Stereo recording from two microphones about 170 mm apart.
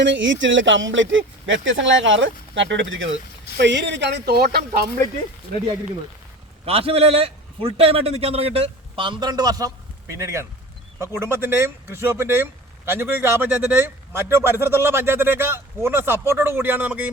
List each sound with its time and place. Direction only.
0.0 s speech: 90° right; by 4.9 s 65° right (ahead or behind)
6.7 s a man's voice: 35° right (ahead or behind); by 17.1 s 10° right (ahead or behind)